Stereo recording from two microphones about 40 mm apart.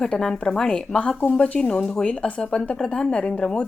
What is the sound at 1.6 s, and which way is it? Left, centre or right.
A woman's voice, left.